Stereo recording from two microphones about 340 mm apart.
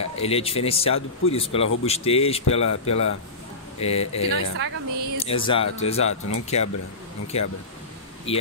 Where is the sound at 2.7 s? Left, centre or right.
Left.